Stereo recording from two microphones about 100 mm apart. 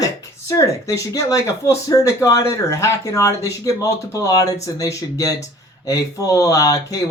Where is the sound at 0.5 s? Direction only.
30° left (ahead or behind).